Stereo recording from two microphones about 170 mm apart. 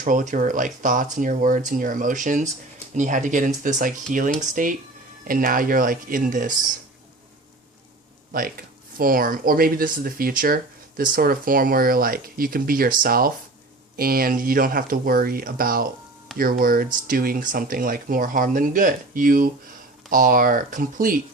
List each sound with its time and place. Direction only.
0.0 s speech: 50° right (ahead or behind)
8.3 s speech: 55° right (ahead or behind)